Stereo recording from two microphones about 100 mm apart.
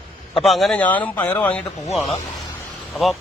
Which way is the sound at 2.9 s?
Centre (ahead or behind).